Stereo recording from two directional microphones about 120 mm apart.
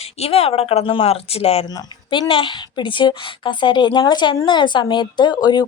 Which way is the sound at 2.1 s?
45° left (ahead or behind).